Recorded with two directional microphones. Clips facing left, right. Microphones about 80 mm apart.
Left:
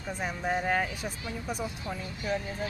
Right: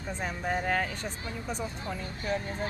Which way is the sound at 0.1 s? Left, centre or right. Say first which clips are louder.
Left 1 dB; centre.